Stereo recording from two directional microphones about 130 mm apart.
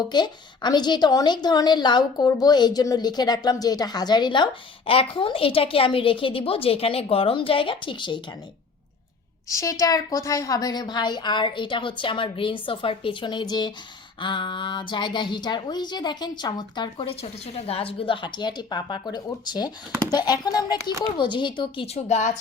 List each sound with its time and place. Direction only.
0.1 s a woman's voice: 35° left (ahead or behind)
9.5 s a woman's voice: 25° left (ahead or behind)
17.2 s a woman's voice: 50° left (ahead or behind)
21.8 s speech: 55° left (ahead or behind)